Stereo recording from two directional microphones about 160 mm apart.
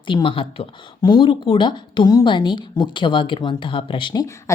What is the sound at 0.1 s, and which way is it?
Speech, 30° left (ahead or behind).